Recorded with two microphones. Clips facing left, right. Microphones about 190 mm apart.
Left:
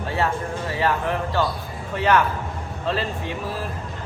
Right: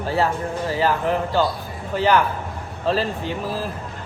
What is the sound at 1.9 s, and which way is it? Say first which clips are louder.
Speech: right 1 dB; 30° right (ahead or behind).